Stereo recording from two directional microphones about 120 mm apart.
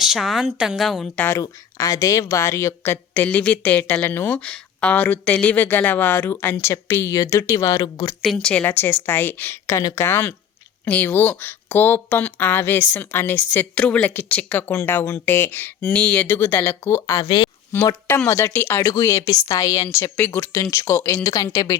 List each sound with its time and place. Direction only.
0.0 s a woman's voice: centre (ahead or behind)
1.1 s a woman's voice: 15° left (ahead or behind)
1.4 s a woman's voice: 25° left (ahead or behind)
8.2 s a woman's voice: 5° left (ahead or behind); by 17.2 s 20° left (ahead or behind)
17.2 s speech: 40° left (ahead or behind)
18.3 s a woman's voice: 20° left (ahead or behind)
18.8 s a woman's voice: 30° left (ahead or behind)